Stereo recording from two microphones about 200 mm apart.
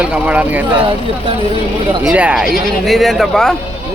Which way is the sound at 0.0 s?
5° right (ahead or behind).